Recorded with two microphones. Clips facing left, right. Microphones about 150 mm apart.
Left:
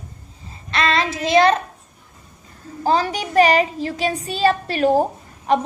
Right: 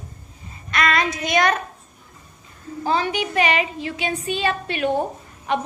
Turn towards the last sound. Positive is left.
turn(degrees=40)  # may be behind; listen again after turning